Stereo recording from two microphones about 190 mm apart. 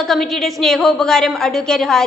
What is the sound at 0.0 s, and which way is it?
A woman's voice, centre (ahead or behind).